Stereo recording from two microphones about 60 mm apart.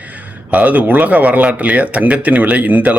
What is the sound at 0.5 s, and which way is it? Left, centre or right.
Speech, right.